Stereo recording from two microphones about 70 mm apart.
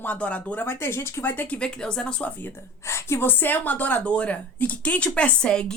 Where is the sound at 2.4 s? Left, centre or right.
Left.